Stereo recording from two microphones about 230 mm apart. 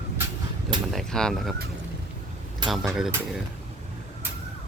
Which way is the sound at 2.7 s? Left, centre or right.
Centre.